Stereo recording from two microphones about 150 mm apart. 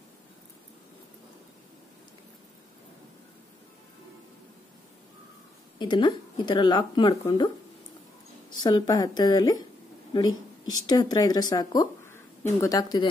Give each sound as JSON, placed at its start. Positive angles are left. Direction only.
{"t": 5.8, "sound": "speech", "side_deg": 30}
{"t": 8.6, "sound": "speech", "side_deg": 25}